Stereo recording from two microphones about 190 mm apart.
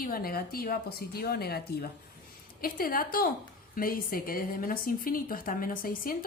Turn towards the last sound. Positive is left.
turn(degrees=50)  # may be behind; listen again after turning